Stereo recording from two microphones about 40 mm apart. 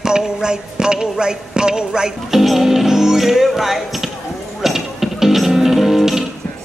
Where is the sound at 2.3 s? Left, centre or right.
Centre.